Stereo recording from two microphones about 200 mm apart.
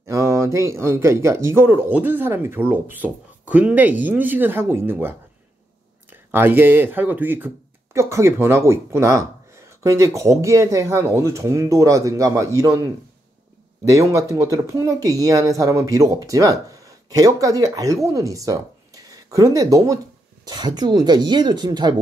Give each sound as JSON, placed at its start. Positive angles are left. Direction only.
{"t": 0.0, "sound": "speech", "side_deg": -15}